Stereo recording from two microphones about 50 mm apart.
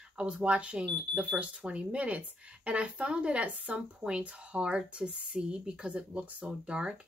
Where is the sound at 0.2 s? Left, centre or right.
Right.